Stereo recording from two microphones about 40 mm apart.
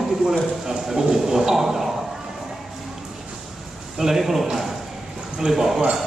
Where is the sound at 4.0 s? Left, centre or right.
Centre.